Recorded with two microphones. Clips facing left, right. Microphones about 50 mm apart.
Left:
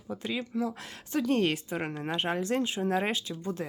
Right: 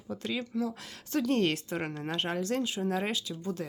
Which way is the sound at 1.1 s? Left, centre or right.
Centre.